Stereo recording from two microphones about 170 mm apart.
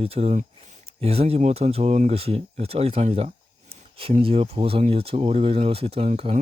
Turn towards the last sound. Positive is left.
turn(degrees=-40)  # may be behind; listen again after turning